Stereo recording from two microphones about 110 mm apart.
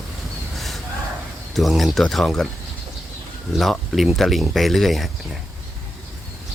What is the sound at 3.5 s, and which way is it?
Speech, centre (ahead or behind).